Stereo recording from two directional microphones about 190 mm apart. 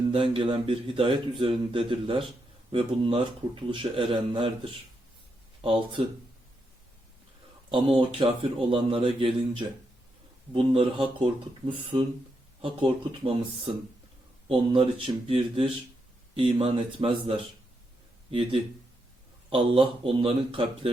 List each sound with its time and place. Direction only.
0.1 s a man's voice: 30° right (ahead or behind)
7.7 s a man's voice: 25° right (ahead or behind)
14.4 s a man's voice: 30° right (ahead or behind)